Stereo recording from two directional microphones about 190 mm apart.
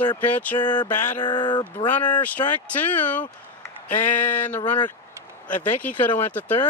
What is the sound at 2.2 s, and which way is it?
Speech, 10° left (ahead or behind).